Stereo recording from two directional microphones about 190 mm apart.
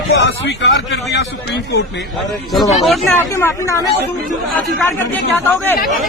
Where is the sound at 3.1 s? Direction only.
15° left (ahead or behind).